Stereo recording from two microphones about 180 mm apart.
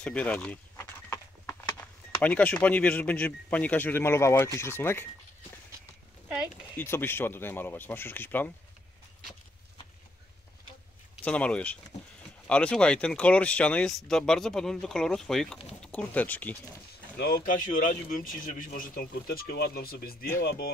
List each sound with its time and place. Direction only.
0.0 s speech: 5° left (ahead or behind)
0.7 s horse: 10° left (ahead or behind)
1.8 s speech: 10° left (ahead or behind)
6.2 s speech: 5° right (ahead or behind)
6.8 s speech: 10° left (ahead or behind)
11.2 s speech: 5° left (ahead or behind)
17.2 s speech: 50° left (ahead or behind)